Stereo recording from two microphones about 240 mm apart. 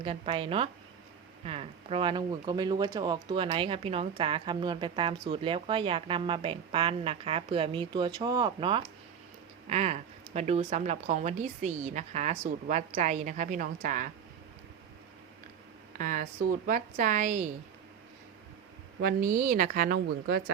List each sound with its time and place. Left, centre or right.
0.0 s a woman's voice: right
16.0 s a woman's voice: right
19.0 s a woman's voice: right